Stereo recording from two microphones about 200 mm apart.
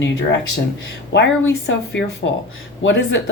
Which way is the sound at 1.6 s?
60° left (ahead or behind).